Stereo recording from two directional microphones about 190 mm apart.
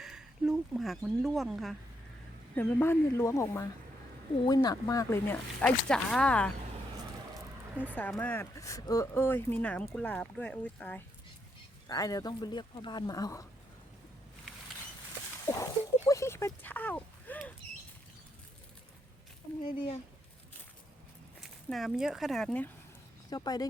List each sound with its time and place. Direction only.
0.0 s speech: 5° right (ahead or behind)
2.6 s speech: 10° left (ahead or behind)
7.8 s speech: 10° left (ahead or behind)
11.9 s speech: 20° left (ahead or behind)
15.5 s speech: 15° left (ahead or behind)
21.7 s speech: centre (ahead or behind)
23.3 s speech: 20° left (ahead or behind)